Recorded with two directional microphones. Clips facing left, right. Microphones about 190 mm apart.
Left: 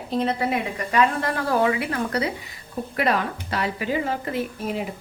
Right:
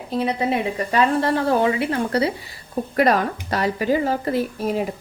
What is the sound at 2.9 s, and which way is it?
A woman's voice, 40° right (ahead or behind).